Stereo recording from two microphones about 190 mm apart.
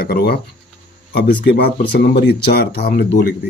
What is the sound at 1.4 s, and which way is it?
Speech, 60° left (ahead or behind).